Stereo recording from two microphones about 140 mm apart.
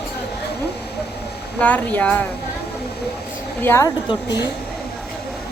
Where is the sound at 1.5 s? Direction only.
10° left (ahead or behind).